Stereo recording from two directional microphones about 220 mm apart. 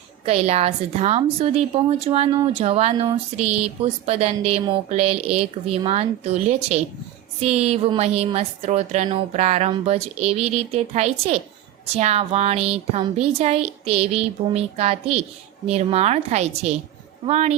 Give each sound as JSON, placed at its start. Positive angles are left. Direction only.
{"t": 0.3, "sound": "a woman's voice", "side_deg": -30}